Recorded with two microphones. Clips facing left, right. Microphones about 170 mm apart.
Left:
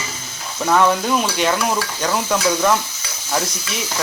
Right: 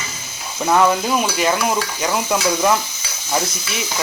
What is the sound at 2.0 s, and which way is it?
Stir, 10° right (ahead or behind).